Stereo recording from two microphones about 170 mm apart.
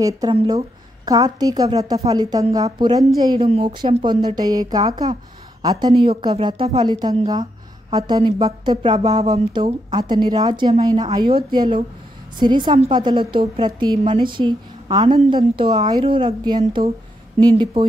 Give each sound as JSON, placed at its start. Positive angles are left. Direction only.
{"t": 0.0, "sound": "a woman's voice", "side_deg": -20}
{"t": 5.9, "sound": "a woman's voice", "side_deg": -35}
{"t": 12.4, "sound": "a woman's voice", "side_deg": -25}